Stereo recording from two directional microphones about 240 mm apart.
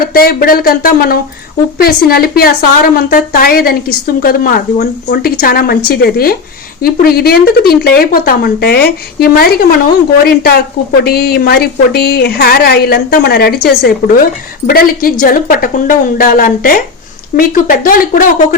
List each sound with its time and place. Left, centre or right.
0.0 s a woman's voice: left